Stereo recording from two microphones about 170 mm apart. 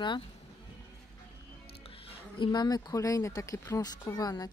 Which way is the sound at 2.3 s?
25° left (ahead or behind).